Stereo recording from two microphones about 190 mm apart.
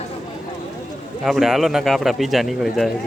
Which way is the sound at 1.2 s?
Centre (ahead or behind).